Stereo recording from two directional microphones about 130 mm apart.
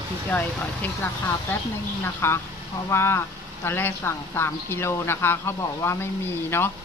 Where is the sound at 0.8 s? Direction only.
15° left (ahead or behind).